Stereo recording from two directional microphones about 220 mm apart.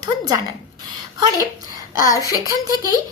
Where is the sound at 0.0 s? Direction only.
15° right (ahead or behind).